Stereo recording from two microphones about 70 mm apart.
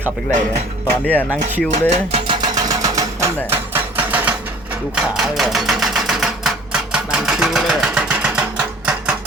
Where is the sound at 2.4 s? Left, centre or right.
Right.